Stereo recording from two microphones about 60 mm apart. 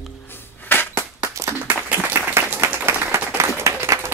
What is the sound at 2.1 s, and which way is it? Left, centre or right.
Applause, right.